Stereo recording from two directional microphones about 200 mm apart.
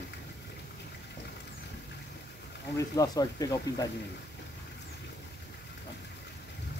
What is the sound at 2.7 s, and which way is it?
Speech, 20° left (ahead or behind).